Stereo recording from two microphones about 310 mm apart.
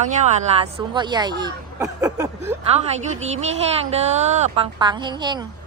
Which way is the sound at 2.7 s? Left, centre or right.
Right.